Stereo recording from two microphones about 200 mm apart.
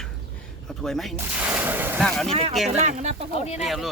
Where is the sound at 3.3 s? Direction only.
30° left (ahead or behind).